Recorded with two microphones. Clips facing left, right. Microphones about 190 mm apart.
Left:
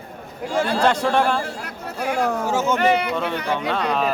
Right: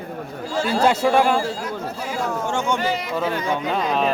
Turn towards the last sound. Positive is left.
turn(degrees=0)  # may be behind; listen again after turning